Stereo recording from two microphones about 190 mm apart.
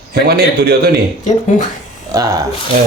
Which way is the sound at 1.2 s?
40° left (ahead or behind).